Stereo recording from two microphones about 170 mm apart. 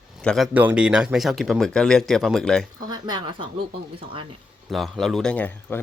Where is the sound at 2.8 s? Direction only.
25° right (ahead or behind).